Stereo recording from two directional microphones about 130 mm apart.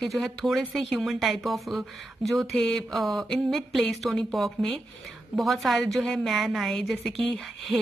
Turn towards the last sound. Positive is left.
turn(degrees=5)  # may be behind; listen again after turning